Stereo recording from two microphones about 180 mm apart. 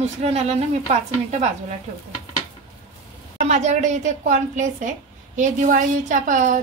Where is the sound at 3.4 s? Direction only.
40° right (ahead or behind).